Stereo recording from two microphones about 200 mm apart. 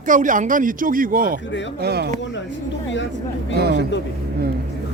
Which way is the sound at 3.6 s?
55° right (ahead or behind).